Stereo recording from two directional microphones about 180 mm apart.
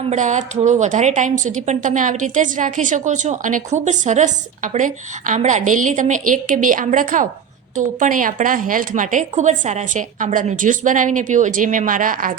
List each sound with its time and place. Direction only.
0.0 s a woman's voice: 40° right (ahead or behind)